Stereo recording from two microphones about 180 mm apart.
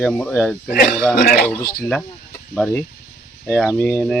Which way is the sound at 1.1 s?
60° left (ahead or behind).